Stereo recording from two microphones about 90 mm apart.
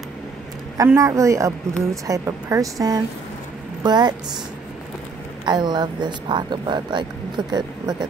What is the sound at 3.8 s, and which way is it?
Speech, 50° right (ahead or behind).